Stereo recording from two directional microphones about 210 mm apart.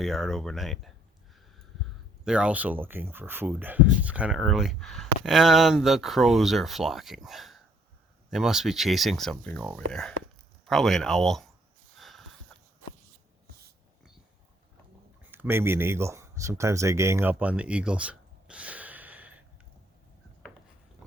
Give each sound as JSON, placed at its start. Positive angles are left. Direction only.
{"t": 0.0, "sound": "speech", "side_deg": 0}
{"t": 2.2, "sound": "speech", "side_deg": -5}
{"t": 11.9, "sound": "sniff", "side_deg": 0}
{"t": 15.2, "sound": "speech", "side_deg": -10}